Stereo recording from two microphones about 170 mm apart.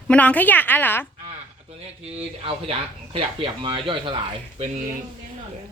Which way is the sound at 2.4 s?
35° right (ahead or behind).